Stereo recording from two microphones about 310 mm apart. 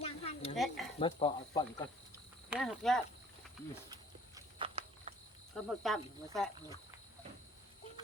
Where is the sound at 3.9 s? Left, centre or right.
Centre.